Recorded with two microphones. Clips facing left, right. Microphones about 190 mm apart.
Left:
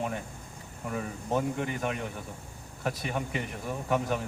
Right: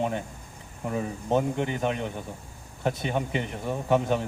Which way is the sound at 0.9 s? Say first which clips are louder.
Right 5 dB; 25° right (ahead or behind).